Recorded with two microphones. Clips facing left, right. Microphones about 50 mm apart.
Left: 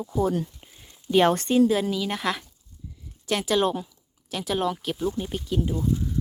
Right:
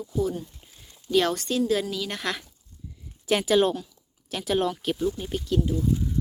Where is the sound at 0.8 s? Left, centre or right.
Centre.